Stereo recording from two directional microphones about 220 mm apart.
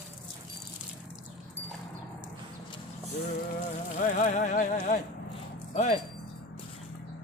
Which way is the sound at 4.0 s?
35° left (ahead or behind).